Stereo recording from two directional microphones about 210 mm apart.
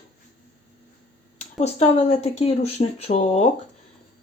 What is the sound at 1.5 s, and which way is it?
Speech, 30° left (ahead or behind).